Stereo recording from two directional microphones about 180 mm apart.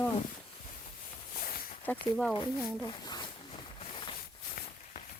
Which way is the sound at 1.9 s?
10° left (ahead or behind).